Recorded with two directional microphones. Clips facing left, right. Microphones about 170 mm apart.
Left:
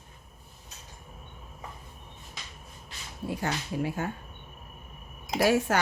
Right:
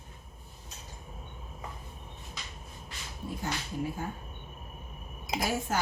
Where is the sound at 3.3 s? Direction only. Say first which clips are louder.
Left 4 dB; 75° left (ahead or behind).